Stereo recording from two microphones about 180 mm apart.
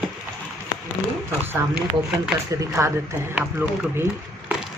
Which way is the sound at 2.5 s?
15° right (ahead or behind).